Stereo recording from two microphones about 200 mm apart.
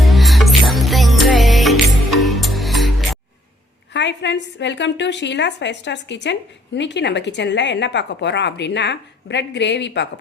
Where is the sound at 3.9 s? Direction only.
60° left (ahead or behind).